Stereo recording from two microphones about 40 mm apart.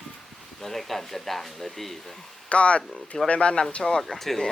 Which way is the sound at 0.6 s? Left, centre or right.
Centre.